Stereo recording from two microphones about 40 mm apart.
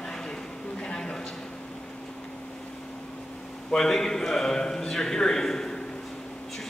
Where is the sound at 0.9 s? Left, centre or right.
Centre.